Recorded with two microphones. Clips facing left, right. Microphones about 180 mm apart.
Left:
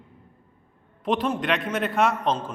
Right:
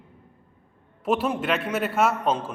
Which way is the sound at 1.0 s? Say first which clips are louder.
Even; 5° right (ahead or behind).